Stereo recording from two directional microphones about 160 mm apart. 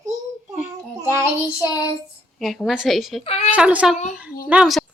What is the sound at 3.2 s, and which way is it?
Speech, 40° left (ahead or behind).